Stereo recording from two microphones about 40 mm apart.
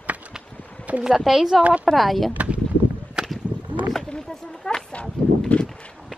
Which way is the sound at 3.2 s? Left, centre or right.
Centre.